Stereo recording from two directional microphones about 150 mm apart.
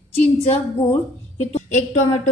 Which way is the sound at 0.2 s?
45° left (ahead or behind).